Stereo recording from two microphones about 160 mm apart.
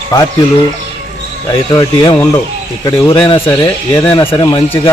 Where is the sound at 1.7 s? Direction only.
20° left (ahead or behind).